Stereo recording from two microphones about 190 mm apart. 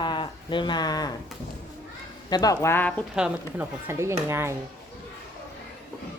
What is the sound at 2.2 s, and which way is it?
Speech, 20° left (ahead or behind).